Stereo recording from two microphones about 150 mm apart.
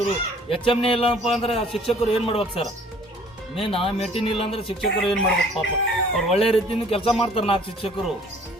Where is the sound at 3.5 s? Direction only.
40° left (ahead or behind).